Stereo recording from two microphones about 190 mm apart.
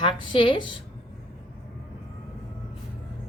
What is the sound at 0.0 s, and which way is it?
Speech, 25° left (ahead or behind).